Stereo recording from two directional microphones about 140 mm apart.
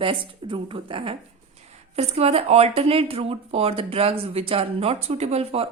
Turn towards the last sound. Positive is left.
turn(degrees=-45)  # may be behind; listen again after turning